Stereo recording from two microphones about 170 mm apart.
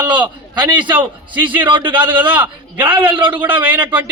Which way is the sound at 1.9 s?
10° right (ahead or behind).